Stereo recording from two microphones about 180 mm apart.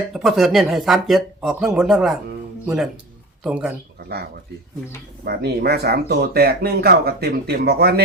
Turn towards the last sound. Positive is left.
turn(degrees=-60)  # may be behind; listen again after turning